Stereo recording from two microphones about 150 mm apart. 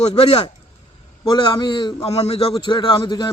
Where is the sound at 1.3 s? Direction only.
30° left (ahead or behind).